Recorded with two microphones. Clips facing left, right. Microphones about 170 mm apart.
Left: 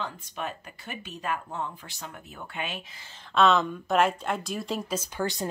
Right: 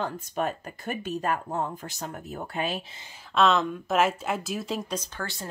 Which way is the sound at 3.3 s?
Centre (ahead or behind).